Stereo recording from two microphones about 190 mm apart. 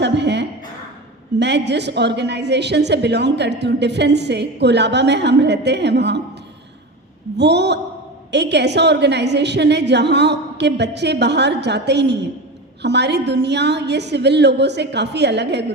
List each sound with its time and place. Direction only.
0.0 s a sound: 65° right (ahead or behind)
1.4 s a woman's voice: 65° right (ahead or behind)
7.3 s a woman's voice: 65° right (ahead or behind)